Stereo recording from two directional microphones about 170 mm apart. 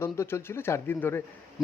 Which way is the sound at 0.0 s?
15° left (ahead or behind).